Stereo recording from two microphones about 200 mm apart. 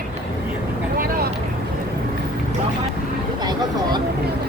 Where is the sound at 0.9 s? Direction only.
50° right (ahead or behind).